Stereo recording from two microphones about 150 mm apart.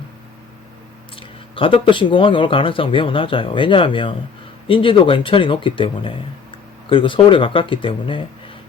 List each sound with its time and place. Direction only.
1.1 s speech: 35° left (ahead or behind)